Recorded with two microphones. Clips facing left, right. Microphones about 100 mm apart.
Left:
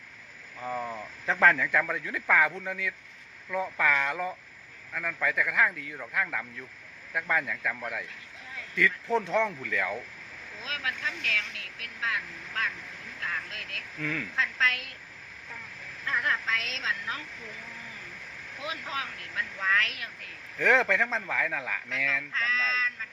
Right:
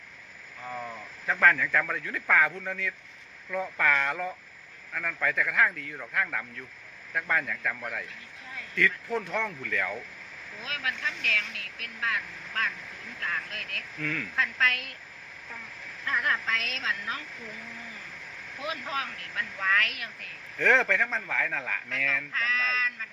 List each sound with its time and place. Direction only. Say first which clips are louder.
0.6 s speech: left 4 dB; 20° left (ahead or behind)
1.8 s speech: left 1 dB; 10° left (ahead or behind)
9.0 s speech: left 4 dB; 25° left (ahead or behind)
10.6 s speech: right 1 dB; 25° left (ahead or behind)
16.2 s speech: right 1 dB; 20° left (ahead or behind)
19.8 s speech: right 1 dB; 25° left (ahead or behind)
20.6 s speech: even; 10° left (ahead or behind)
22.4 s speech: even; 25° left (ahead or behind)